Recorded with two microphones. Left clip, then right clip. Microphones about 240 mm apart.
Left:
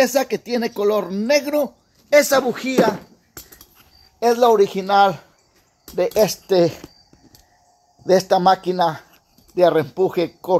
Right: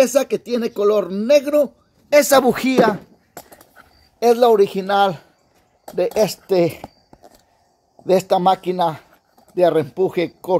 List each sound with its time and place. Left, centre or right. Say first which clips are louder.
0.5 s speech: right 2 dB; centre
2.1 s speech: right 2 dB; right
2.4 s speech: right 3 dB; right
4.2 s speech: right 1 dB; right; by 6.8 s centre
8.0 s speech: even; centre